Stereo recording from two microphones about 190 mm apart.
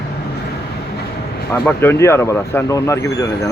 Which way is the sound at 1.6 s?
10° left (ahead or behind).